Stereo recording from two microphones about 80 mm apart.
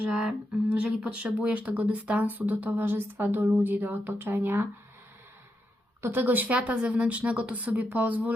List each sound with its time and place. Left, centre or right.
0.1 s speech: centre; by 4.6 s right
6.0 s speech: right